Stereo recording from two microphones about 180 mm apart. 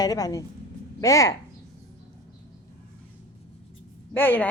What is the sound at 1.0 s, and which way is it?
Chicken, 20° left (ahead or behind).